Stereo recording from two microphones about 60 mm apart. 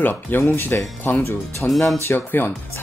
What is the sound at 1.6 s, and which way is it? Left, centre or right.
Speech, centre.